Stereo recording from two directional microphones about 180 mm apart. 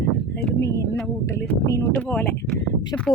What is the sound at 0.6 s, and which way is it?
Speech, 15° left (ahead or behind).